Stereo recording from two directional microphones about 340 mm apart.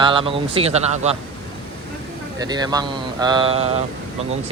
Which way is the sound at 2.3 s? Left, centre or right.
Centre.